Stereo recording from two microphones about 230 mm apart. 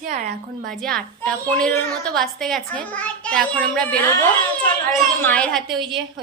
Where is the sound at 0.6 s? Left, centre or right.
Centre.